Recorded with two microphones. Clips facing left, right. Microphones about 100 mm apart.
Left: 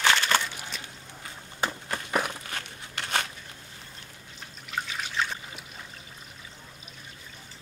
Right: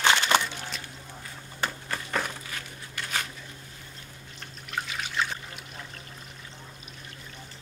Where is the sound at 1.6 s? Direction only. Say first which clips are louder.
Left 1 dB; 15° left (ahead or behind).